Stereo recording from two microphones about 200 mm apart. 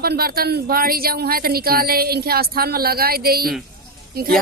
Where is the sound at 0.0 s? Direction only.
50° right (ahead or behind).